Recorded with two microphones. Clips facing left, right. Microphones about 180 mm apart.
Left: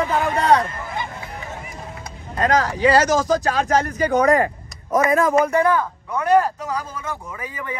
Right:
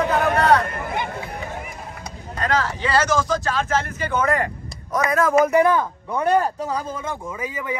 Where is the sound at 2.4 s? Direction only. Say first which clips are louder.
Left 5 dB; 40° left (ahead or behind).